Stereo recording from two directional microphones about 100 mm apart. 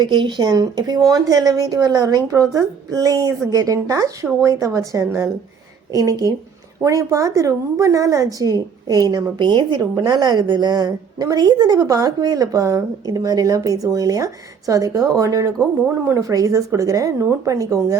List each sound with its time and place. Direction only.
0.0 s a woman's voice: 50° right (ahead or behind)
9.9 s a woman's voice: 35° right (ahead or behind)
10.2 s a woman's voice: 50° right (ahead or behind)